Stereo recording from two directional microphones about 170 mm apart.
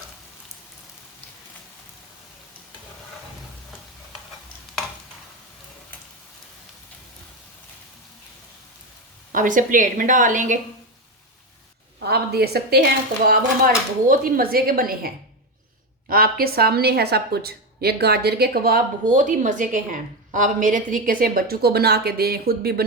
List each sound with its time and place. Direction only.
9.3 s a woman's voice: 50° right (ahead or behind)
11.9 s a woman's voice: 70° right (ahead or behind)